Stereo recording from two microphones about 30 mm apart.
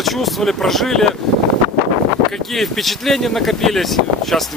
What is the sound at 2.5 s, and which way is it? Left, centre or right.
Speech, centre.